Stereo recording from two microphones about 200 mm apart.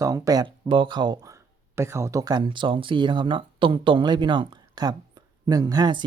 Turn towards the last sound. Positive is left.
turn(degrees=-20)  # may be behind; listen again after turning